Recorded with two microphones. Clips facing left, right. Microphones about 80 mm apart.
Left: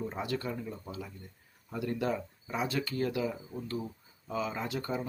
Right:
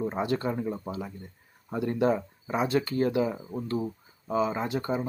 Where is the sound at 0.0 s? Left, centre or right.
Right.